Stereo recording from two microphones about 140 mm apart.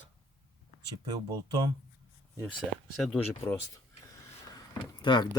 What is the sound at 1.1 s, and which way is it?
Speech, 30° right (ahead or behind).